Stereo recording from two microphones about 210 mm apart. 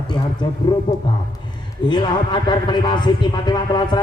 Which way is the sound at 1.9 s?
20° left (ahead or behind).